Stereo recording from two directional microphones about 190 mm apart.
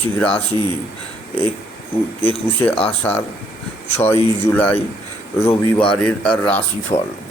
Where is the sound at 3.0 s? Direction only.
10° left (ahead or behind).